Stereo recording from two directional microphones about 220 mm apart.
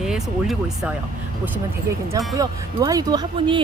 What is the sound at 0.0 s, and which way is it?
Speech, centre (ahead or behind).